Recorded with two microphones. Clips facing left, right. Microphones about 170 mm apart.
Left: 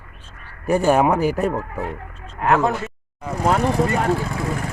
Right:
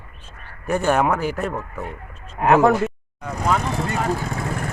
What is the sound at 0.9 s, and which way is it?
Speech, 10° left (ahead or behind).